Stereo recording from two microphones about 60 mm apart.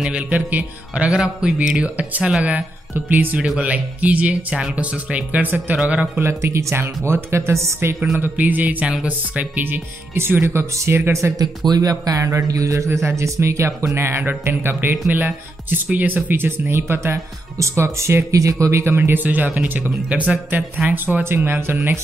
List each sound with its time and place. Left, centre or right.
0.1 s speech: right
1.1 s speech: centre
2.4 s speech: right
5.8 s speech: centre
6.2 s speech: right
8.2 s speech: right
11.3 s a man's voice: right
21.2 s speech: right